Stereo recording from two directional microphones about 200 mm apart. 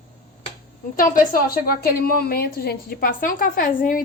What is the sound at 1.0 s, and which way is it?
A woman's voice, 45° left (ahead or behind).